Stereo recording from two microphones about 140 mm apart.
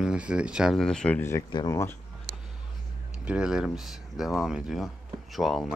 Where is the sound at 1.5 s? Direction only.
25° left (ahead or behind).